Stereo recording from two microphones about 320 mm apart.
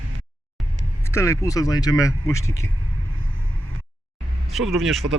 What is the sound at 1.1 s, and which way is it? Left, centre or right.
Speech, centre.